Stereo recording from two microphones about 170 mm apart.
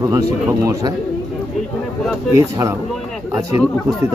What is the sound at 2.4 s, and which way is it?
Speech, 20° right (ahead or behind).